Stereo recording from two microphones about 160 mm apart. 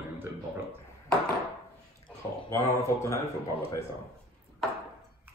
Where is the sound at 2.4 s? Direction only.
15° left (ahead or behind).